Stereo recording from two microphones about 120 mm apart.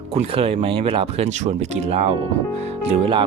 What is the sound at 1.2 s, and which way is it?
Speech, 70° right (ahead or behind).